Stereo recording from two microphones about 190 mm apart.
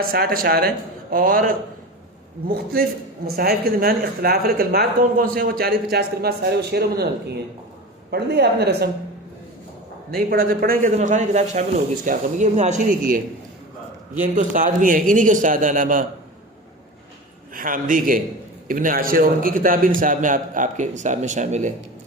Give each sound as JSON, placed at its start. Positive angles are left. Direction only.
{"t": 0.1, "sound": "a woman's voice", "side_deg": -50}
{"t": 10.1, "sound": "speech", "side_deg": -55}
{"t": 10.9, "sound": "speech", "side_deg": -40}
{"t": 14.2, "sound": "speech", "side_deg": -45}
{"t": 17.5, "sound": "speech", "side_deg": -45}